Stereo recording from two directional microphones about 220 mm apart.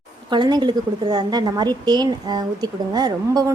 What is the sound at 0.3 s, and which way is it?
A woman's voice, 20° right (ahead or behind).